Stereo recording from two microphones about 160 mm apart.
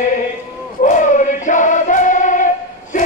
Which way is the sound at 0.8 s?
50° left (ahead or behind).